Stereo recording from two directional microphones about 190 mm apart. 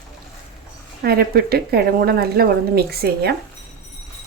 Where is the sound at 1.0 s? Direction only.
55° right (ahead or behind).